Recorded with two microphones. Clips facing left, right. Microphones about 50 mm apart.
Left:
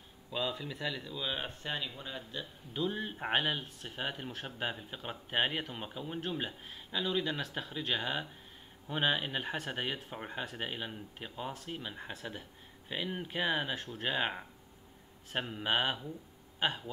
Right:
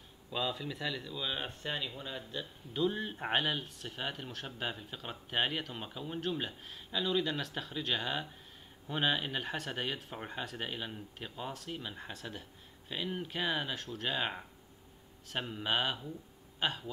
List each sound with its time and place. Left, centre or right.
0.3 s speech: centre